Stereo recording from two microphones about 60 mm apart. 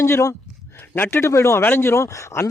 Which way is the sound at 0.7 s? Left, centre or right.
Left.